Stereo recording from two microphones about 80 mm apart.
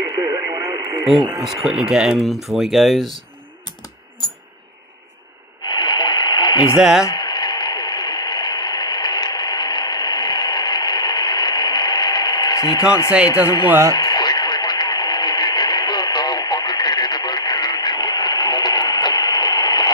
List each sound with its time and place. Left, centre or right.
0.0 s radio: right
1.4 s speech: centre
5.6 s radio: left
6.8 s speech: centre
7.2 s radio: left
13.5 s speech: left
13.9 s radio: left